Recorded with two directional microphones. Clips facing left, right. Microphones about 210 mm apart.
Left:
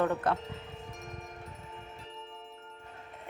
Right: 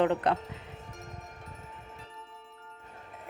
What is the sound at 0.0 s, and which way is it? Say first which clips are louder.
Speech: right 3 dB; 20° right (ahead or behind).